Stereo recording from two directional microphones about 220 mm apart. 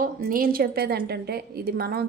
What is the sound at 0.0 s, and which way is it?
A woman's voice, 40° right (ahead or behind).